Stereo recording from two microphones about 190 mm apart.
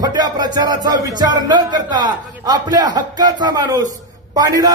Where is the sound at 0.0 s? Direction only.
20° right (ahead or behind).